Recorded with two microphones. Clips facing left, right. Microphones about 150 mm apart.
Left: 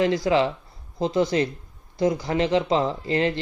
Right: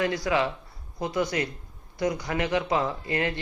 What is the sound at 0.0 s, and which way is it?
Speech, 25° left (ahead or behind).